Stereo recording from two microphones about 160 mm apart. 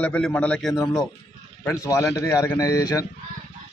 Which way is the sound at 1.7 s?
20° left (ahead or behind).